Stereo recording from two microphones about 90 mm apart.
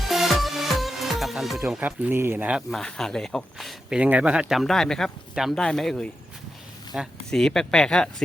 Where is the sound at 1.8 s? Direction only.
20° right (ahead or behind).